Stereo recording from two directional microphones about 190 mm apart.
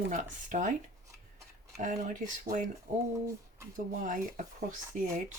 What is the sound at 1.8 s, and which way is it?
Speech, 45° right (ahead or behind).